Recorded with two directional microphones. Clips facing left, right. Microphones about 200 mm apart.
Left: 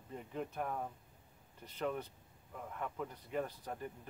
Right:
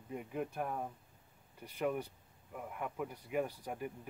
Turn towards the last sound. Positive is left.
turn(degrees=-10)  # may be behind; listen again after turning